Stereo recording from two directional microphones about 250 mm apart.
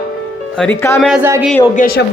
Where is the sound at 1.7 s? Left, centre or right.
Left.